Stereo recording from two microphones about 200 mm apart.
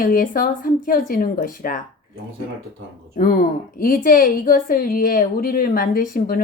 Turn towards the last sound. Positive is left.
turn(degrees=45)  # may be behind; listen again after turning